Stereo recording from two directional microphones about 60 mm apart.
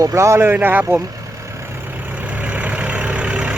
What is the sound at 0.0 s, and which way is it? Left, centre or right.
Speech, right.